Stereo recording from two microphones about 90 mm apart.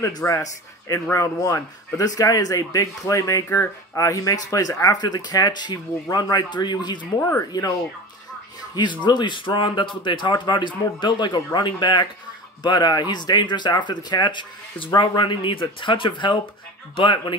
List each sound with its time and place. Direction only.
0.0 s speech: 30° left (ahead or behind); by 7.0 s 55° left (ahead or behind)
7.0 s speech: 25° left (ahead or behind)
9.0 s speech: 60° left (ahead or behind)